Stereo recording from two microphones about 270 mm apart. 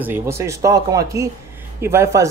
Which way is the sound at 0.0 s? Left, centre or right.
Centre.